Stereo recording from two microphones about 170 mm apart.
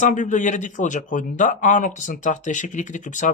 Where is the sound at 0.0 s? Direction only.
45° left (ahead or behind).